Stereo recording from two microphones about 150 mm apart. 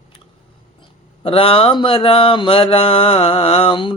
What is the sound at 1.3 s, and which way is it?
Mantra, 40° left (ahead or behind).